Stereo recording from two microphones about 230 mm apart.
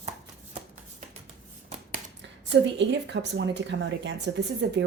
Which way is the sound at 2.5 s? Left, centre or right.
Right.